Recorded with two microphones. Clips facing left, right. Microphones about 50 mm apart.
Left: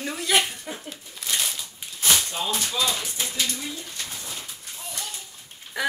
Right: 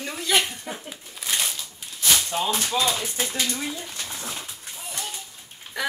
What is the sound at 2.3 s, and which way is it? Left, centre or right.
Speech, right.